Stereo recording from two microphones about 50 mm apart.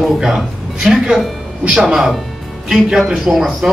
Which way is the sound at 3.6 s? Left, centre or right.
Centre.